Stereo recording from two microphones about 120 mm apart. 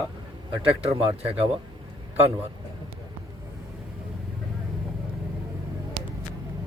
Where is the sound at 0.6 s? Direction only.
50° right (ahead or behind).